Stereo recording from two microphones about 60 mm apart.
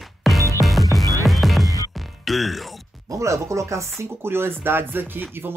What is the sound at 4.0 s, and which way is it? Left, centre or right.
Speech, right.